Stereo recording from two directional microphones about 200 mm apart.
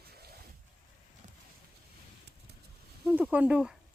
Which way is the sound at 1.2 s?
35° right (ahead or behind).